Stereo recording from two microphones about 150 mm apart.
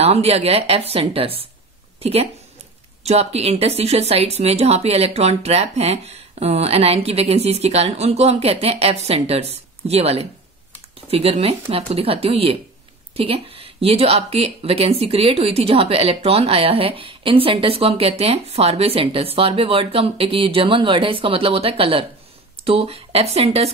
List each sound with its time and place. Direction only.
0.0 s a woman's voice: 45° right (ahead or behind)